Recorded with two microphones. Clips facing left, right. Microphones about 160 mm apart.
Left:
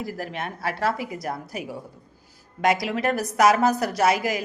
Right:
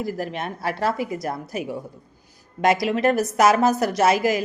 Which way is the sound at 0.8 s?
25° right (ahead or behind).